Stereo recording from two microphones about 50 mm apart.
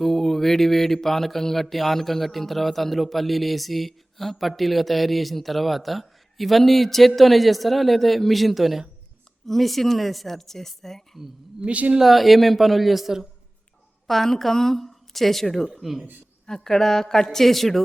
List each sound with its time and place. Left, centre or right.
0.0 s mantra: centre
1.0 s speech: centre
11.6 s speech: right
11.9 s speech: centre
16.6 s speech: centre